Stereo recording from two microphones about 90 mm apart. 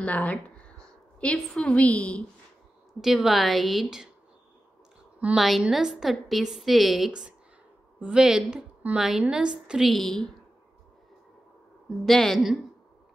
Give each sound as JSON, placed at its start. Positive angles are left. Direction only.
{"t": 0.0, "sound": "a woman's voice", "side_deg": 15}
{"t": 3.0, "sound": "a woman's voice", "side_deg": -5}
{"t": 5.4, "sound": "a woman's voice", "side_deg": 0}
{"t": 12.1, "sound": "a woman's voice", "side_deg": 5}